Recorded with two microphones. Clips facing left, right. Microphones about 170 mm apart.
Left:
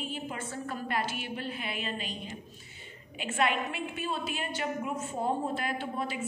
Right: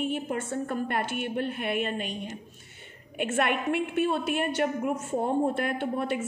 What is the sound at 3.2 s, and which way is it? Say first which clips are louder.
A woman's voice: right 3 dB; 60° right (ahead or behind).